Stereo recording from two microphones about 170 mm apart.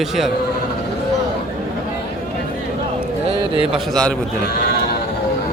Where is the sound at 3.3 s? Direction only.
30° right (ahead or behind).